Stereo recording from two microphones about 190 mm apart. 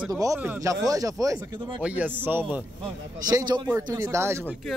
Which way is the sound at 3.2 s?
20° right (ahead or behind).